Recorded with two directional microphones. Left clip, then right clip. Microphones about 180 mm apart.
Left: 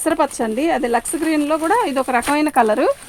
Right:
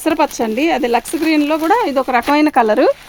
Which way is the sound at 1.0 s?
60° right (ahead or behind).